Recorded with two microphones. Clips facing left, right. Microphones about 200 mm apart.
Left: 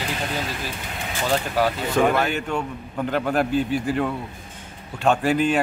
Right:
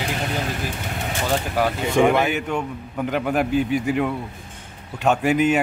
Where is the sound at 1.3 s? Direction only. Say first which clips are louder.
Left 1 dB; 10° right (ahead or behind).